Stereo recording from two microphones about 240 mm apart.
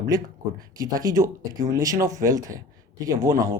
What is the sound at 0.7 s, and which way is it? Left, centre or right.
Speech, centre.